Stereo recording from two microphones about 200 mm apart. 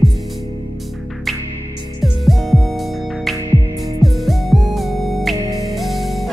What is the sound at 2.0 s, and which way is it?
Music, centre (ahead or behind).